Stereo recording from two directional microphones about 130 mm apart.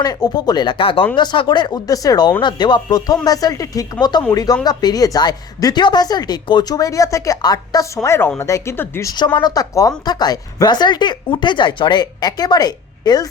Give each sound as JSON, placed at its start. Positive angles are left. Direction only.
{"t": 0.0, "sound": "a woman's voice", "side_deg": 30}
{"t": 8.0, "sound": "speech", "side_deg": 20}
{"t": 9.1, "sound": "a woman's voice", "side_deg": 35}